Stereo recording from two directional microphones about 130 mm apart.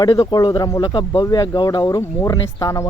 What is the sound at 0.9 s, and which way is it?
Speech, 40° left (ahead or behind).